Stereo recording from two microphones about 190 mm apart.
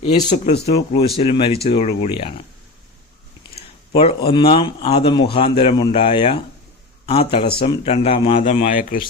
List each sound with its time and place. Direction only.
0.0 s a man's voice: 35° left (ahead or behind)
4.3 s a man's voice: 30° left (ahead or behind)
8.4 s speech: 40° left (ahead or behind)